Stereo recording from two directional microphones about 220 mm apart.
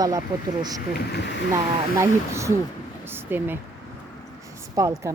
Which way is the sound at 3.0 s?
10° right (ahead or behind).